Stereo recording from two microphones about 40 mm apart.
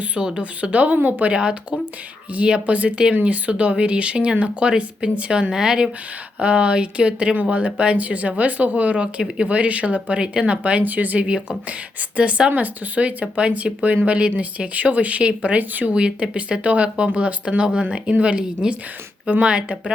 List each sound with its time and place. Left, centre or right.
0.2 s speech: right
0.6 s speech: right
1.3 s speech: right
12.1 s speech: right